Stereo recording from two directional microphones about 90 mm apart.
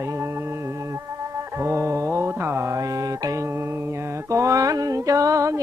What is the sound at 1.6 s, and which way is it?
Mantra, 30° right (ahead or behind).